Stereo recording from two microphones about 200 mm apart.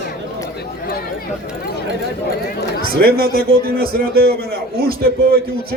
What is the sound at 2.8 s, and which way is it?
A man's voice, 50° right (ahead or behind).